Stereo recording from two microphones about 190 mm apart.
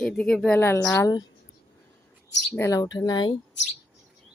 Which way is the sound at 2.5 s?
15° left (ahead or behind).